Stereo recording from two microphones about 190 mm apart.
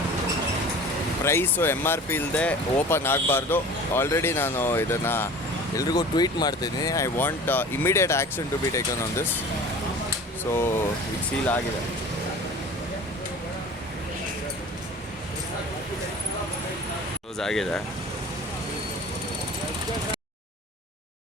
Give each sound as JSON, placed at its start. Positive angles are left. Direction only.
{"t": 1.2, "sound": "speech", "side_deg": 10}
{"t": 10.5, "sound": "speech", "side_deg": 15}
{"t": 17.3, "sound": "speech", "side_deg": 0}